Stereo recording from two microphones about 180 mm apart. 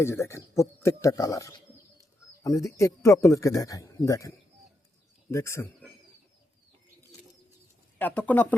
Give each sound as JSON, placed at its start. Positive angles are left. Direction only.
{"t": 0.0, "sound": "speech", "side_deg": 15}
{"t": 5.3, "sound": "speech", "side_deg": 15}
{"t": 7.9, "sound": "speech", "side_deg": 10}